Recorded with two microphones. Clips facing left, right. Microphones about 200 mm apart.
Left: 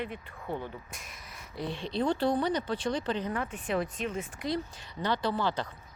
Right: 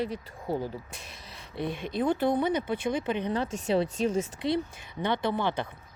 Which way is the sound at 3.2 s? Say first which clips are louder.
Right 4 dB; 30° right (ahead or behind).